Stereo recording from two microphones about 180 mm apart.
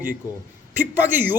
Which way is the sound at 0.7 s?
10° right (ahead or behind).